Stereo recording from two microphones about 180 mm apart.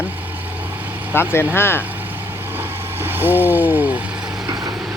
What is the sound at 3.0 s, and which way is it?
Speech, 10° right (ahead or behind).